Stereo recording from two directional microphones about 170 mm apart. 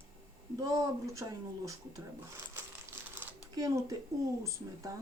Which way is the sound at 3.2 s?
20° right (ahead or behind).